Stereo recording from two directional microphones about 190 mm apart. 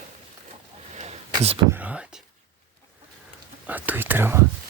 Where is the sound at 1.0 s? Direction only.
30° right (ahead or behind).